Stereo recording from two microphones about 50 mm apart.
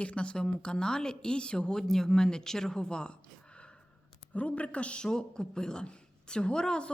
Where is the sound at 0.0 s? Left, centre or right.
Left.